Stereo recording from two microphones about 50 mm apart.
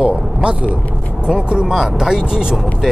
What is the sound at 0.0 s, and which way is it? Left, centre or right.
Vehicle, right.